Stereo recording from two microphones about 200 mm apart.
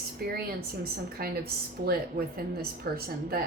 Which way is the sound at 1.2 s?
50° right (ahead or behind).